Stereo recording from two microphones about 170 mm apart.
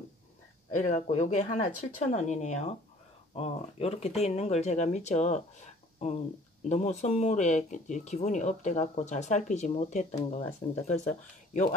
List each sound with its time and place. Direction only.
0.8 s speech: 40° left (ahead or behind)